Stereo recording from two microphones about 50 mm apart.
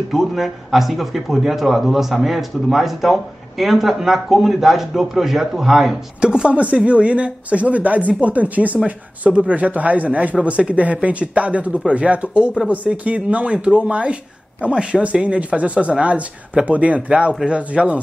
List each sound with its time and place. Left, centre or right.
0.1 s speech: centre
6.2 s a man's voice: centre